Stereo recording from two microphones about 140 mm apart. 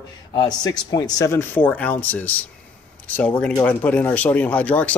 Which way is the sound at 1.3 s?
15° left (ahead or behind).